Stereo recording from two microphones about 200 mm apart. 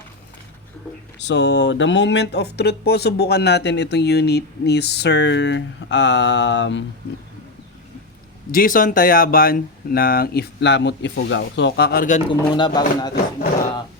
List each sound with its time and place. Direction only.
1.2 s speech: 60° left (ahead or behind)
8.5 s speech: 45° left (ahead or behind)
12.3 s speech: 25° left (ahead or behind)